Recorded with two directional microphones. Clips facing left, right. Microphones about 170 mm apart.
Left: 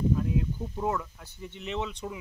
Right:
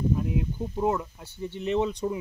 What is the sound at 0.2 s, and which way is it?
Speech, 20° right (ahead or behind).